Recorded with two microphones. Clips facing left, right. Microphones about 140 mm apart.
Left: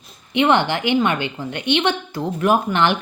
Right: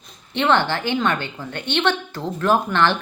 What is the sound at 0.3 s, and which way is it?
Speech, 15° left (ahead or behind).